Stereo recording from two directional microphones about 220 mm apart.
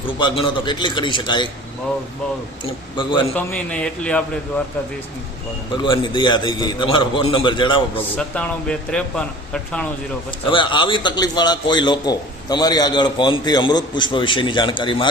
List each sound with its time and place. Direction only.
0.2 s a man's voice: 20° left (ahead or behind)
2.9 s a man's voice: 20° left (ahead or behind)
3.3 s speech: 5° left (ahead or behind)
5.7 s a man's voice: 20° left (ahead or behind)
8.1 s speech: 5° left (ahead or behind)
10.5 s a man's voice: 20° left (ahead or behind)